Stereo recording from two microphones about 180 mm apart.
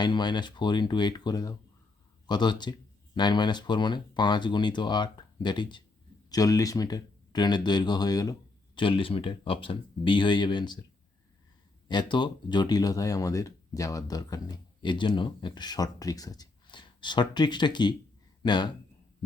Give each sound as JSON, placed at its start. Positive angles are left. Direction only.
{"t": 0.0, "sound": "speech", "side_deg": 25}
{"t": 11.9, "sound": "speech", "side_deg": 25}